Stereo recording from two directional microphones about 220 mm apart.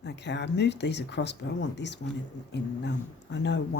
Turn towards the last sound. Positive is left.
turn(degrees=50)  # may be behind; listen again after turning